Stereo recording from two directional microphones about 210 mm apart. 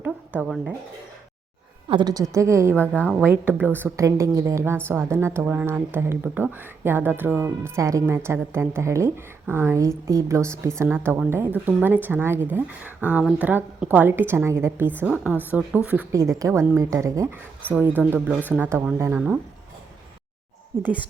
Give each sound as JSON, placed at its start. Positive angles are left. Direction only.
{"t": 0.0, "sound": "speech", "side_deg": -5}
{"t": 1.9, "sound": "a woman's voice", "side_deg": -20}
{"t": 2.7, "sound": "a woman's voice", "side_deg": 5}
{"t": 3.2, "sound": "a woman's voice", "side_deg": -10}